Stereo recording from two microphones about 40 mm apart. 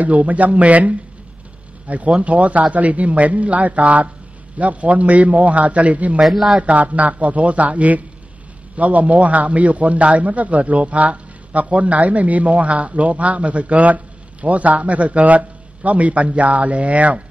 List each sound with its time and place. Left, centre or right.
0.0 s a man's voice: right
6.2 s speech: centre
6.6 s a man's voice: right